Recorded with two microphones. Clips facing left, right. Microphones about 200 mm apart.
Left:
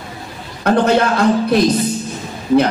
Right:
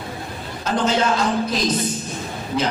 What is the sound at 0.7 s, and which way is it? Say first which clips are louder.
Speech: left 6 dB; 60° left (ahead or behind).